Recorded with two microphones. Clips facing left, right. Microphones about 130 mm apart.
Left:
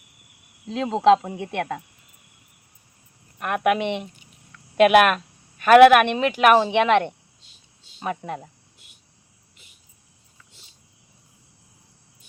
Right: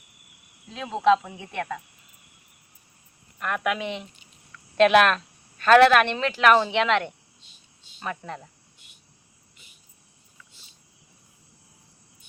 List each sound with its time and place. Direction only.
0.7 s speech: 30° left (ahead or behind)
1.4 s speech: 60° left (ahead or behind)
3.4 s speech: 55° left (ahead or behind)
3.8 s speech: 20° left (ahead or behind)